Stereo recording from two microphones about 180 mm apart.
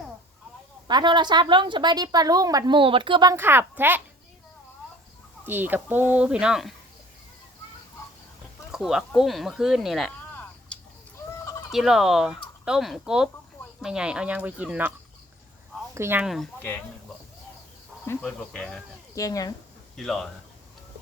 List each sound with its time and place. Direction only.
0.9 s a woman's voice: 25° right (ahead or behind)
5.5 s speech: 10° right (ahead or behind)
8.7 s speech: centre (ahead or behind)
10.7 s a sound: 5° left (ahead or behind)
11.7 s speech: centre (ahead or behind)
16.0 s speech: 15° right (ahead or behind)
16.2 s speech: centre (ahead or behind)
16.6 s speech: 10° left (ahead or behind)
18.0 s speech: 10° left (ahead or behind)
19.1 s speech: 20° left (ahead or behind)